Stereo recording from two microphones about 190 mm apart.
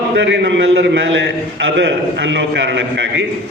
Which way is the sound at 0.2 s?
70° right (ahead or behind).